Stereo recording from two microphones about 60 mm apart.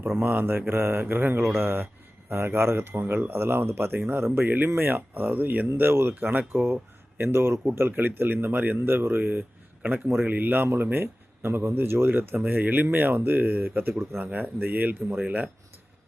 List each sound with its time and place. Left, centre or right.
0.2 s speech: right